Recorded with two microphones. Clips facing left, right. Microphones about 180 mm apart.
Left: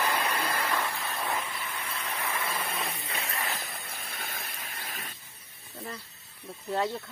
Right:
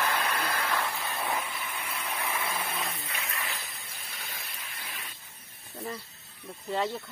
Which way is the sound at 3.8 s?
55° left (ahead or behind).